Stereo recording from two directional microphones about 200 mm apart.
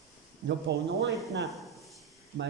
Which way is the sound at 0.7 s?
60° right (ahead or behind).